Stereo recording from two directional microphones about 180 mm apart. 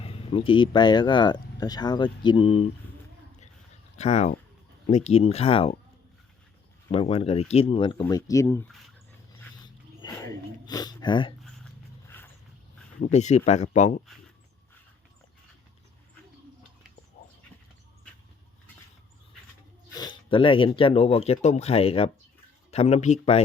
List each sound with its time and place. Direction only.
0.0 s speech: 30° left (ahead or behind)
3.9 s speech: 40° left (ahead or behind)
6.9 s speech: 30° left (ahead or behind); by 8.7 s 15° left (ahead or behind)
9.6 s wild animals: 25° left (ahead or behind)
10.7 s speech: 20° left (ahead or behind)
12.0 s wild animals: 10° left (ahead or behind)
13.0 s speech: 40° left (ahead or behind)
19.9 s speech: 25° left (ahead or behind)